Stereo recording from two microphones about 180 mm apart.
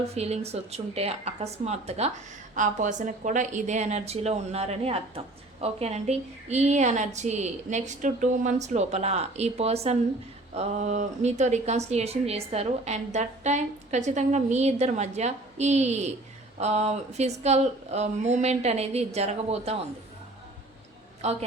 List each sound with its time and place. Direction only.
0.1 s a woman's voice: 35° right (ahead or behind)
21.2 s a woman's voice: 35° right (ahead or behind)